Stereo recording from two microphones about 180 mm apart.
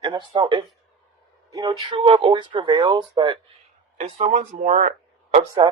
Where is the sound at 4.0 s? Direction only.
40° right (ahead or behind).